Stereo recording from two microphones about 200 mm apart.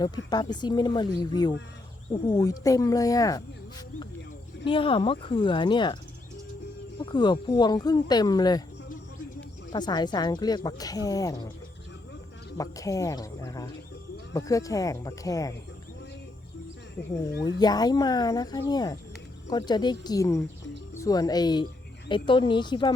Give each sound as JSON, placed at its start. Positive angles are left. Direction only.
{"t": 0.3, "sound": "speech", "side_deg": 20}
{"t": 4.6, "sound": "speech", "side_deg": 25}
{"t": 7.0, "sound": "speech", "side_deg": 20}
{"t": 9.7, "sound": "speech", "side_deg": 20}
{"t": 12.5, "sound": "speech", "side_deg": 15}
{"t": 17.6, "sound": "speech", "side_deg": 20}